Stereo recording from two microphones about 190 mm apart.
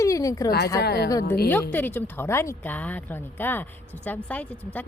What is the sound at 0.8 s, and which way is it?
Speech, 60° left (ahead or behind).